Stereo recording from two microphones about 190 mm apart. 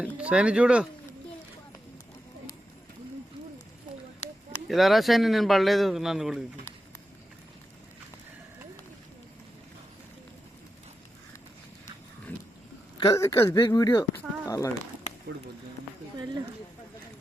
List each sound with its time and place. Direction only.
0.0 s speech: 5° right (ahead or behind)
4.7 s speech: centre (ahead or behind)
13.0 s speech: 20° left (ahead or behind)
14.4 s a sound: 15° left (ahead or behind)